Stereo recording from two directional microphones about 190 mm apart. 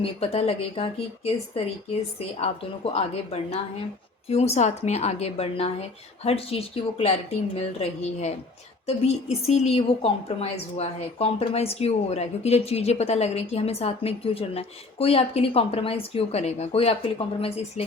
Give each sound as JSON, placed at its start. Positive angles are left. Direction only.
{"t": 0.0, "sound": "a woman's voice", "side_deg": 30}